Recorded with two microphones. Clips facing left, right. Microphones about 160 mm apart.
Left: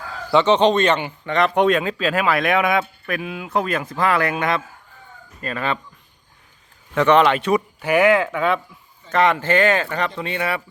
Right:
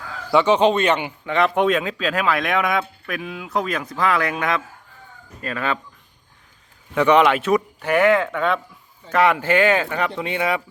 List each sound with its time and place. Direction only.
0.3 s speech: 10° right (ahead or behind)
6.9 s speech: 10° right (ahead or behind)
9.0 s speech: 10° right (ahead or behind)